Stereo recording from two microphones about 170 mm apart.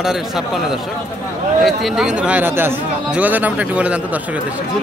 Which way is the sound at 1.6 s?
Centre (ahead or behind).